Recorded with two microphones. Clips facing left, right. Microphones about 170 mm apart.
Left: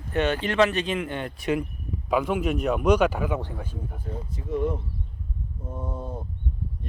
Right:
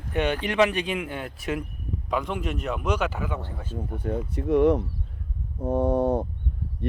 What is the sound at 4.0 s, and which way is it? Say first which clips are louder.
Speech: right 7 dB; 70° right (ahead or behind).